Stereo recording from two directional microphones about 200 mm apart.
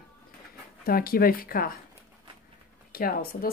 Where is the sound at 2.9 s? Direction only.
45° left (ahead or behind).